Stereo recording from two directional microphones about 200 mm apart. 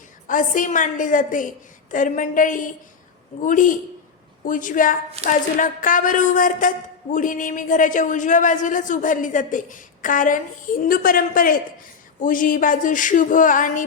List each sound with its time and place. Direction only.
0.3 s a woman's voice: 40° left (ahead or behind)